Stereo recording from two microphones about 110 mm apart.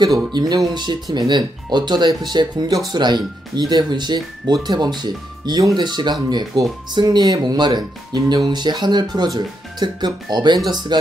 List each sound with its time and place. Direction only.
0.0 s speech: 40° right (ahead or behind)